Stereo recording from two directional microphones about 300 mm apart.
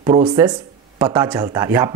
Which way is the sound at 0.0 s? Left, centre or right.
Centre.